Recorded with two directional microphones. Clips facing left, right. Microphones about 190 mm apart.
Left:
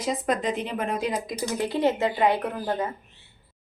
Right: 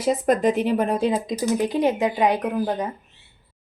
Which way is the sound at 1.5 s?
15° right (ahead or behind).